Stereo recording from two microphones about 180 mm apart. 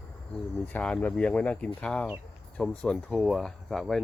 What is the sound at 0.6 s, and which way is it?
Speech, 10° left (ahead or behind).